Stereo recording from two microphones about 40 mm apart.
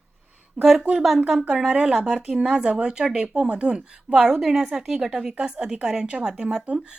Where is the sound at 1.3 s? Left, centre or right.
Right.